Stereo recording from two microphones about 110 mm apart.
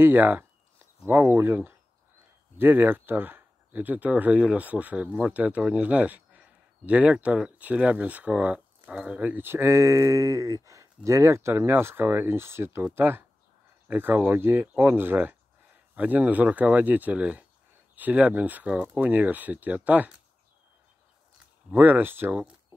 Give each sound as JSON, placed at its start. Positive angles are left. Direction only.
{"t": 0.0, "sound": "speech", "side_deg": -15}
{"t": 21.6, "sound": "speech", "side_deg": -15}